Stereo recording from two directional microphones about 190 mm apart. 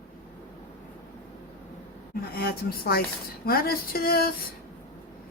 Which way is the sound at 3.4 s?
50° left (ahead or behind).